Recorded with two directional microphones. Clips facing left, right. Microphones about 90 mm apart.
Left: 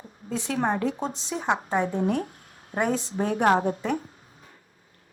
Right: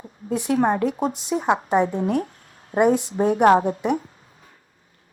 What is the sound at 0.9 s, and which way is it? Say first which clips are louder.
A woman's voice: right 5 dB; 15° right (ahead or behind).